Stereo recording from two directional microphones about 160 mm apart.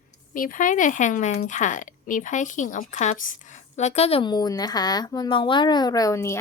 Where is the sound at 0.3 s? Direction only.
55° left (ahead or behind).